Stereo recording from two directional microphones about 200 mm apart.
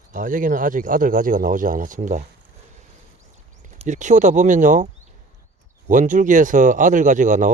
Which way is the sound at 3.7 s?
35° right (ahead or behind).